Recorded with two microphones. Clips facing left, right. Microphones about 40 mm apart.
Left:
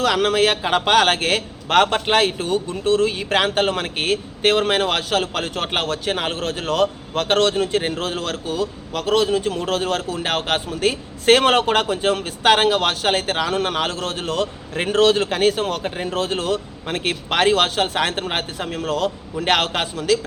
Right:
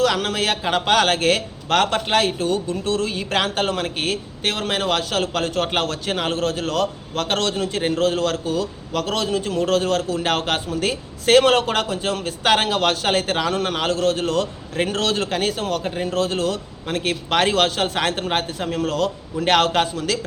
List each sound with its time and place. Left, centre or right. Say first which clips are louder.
0.0 s a man's voice: left 3 dB; centre